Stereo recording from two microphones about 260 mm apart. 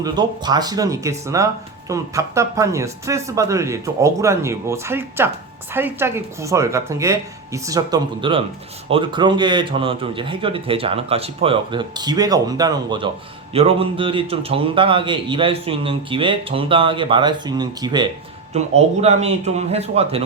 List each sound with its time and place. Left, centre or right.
0.0 s a man's voice: centre